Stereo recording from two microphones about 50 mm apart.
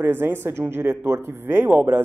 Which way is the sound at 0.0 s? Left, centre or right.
Right.